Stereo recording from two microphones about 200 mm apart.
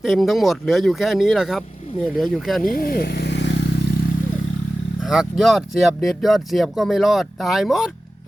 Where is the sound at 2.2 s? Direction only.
Centre (ahead or behind).